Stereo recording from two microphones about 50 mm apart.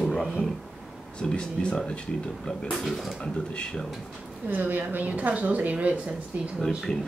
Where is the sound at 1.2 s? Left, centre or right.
Centre.